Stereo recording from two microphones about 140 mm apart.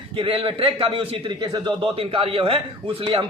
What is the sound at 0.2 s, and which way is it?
A man's voice, 40° right (ahead or behind).